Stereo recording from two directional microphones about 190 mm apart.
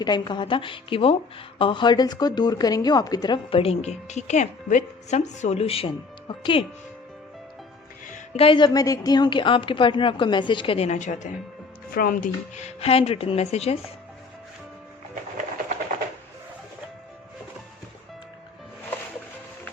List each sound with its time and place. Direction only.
0.0 s a woman's voice: 25° left (ahead or behind)
8.0 s a woman's voice: 40° left (ahead or behind)